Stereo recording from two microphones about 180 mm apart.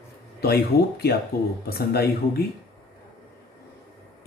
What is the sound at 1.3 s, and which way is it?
Speech, 60° left (ahead or behind).